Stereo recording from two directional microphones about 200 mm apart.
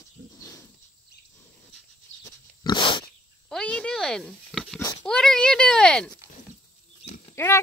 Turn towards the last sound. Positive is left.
turn(degrees=10)  # may be behind; listen again after turning